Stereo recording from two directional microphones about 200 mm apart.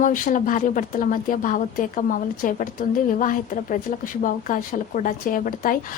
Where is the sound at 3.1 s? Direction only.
40° left (ahead or behind).